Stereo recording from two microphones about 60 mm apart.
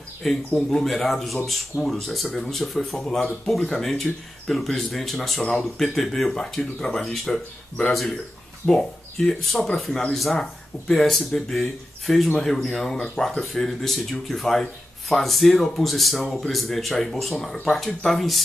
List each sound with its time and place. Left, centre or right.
0.2 s speech: centre